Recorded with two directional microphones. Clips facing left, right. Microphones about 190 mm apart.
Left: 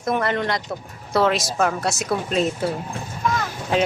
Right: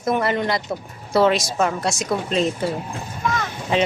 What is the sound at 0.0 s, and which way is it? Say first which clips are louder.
Speech: right 1 dB; 5° right (ahead or behind).